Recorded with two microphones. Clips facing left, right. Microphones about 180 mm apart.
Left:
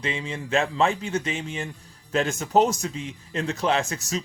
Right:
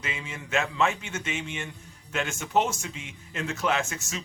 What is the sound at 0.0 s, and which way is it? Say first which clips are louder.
Speech: left 7 dB; 30° left (ahead or behind).